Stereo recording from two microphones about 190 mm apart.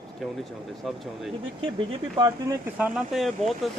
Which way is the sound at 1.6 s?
25° right (ahead or behind).